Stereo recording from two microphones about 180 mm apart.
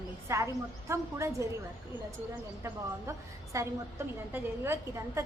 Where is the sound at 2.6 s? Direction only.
15° right (ahead or behind).